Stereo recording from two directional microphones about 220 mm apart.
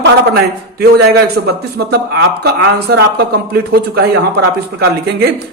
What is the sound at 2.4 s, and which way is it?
Speech, 45° right (ahead or behind).